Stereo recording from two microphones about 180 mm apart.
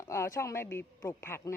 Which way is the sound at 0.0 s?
15° left (ahead or behind).